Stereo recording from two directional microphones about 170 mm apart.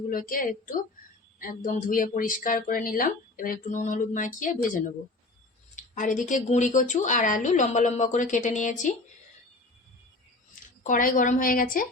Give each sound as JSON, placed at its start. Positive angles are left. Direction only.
{"t": 0.1, "sound": "speech", "side_deg": 55}
{"t": 10.5, "sound": "speech", "side_deg": 50}